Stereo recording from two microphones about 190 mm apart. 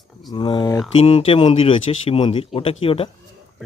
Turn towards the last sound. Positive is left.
turn(degrees=30)  # may be behind; listen again after turning